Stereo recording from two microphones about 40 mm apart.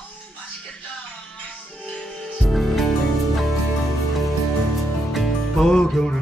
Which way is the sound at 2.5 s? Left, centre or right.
Centre.